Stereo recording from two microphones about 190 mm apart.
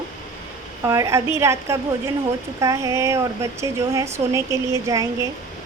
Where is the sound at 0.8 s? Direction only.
15° right (ahead or behind).